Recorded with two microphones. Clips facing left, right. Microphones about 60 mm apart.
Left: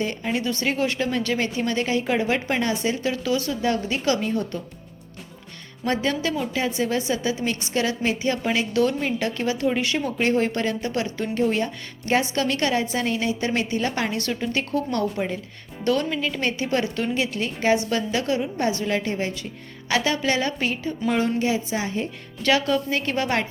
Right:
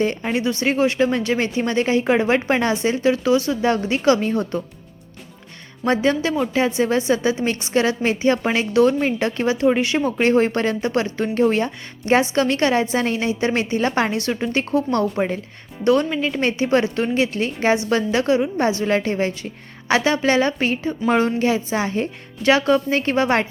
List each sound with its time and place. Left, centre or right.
0.0 s a woman's voice: right
5.8 s a woman's voice: right
10.0 s a woman's voice: right
15.8 s a woman's voice: right
18.9 s a woman's voice: right
19.9 s a woman's voice: right
22.4 s a woman's voice: right